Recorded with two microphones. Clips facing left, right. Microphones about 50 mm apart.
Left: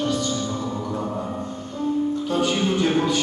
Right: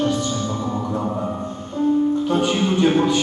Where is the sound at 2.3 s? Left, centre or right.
Centre.